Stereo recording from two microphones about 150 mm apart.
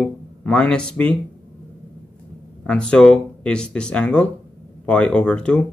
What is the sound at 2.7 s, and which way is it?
Speech, 5° left (ahead or behind).